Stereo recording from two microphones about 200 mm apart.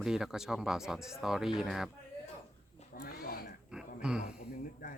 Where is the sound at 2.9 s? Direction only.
45° left (ahead or behind).